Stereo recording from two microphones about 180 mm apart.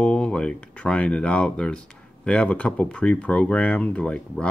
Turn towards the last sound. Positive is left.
turn(degrees=5)  # may be behind; listen again after turning